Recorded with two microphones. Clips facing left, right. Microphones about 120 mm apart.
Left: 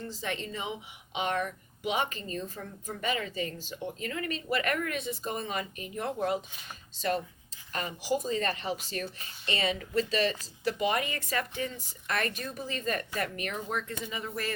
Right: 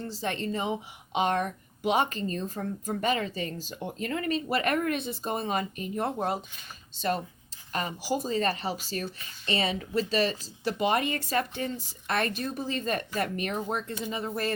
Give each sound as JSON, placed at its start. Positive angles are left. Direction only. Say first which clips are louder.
{"t": 0.0, "sound": "speech", "louder": "right 4 dB", "side_deg": -35}
{"t": 7.7, "sound": "a woman's voice", "louder": "right 1 dB", "side_deg": -35}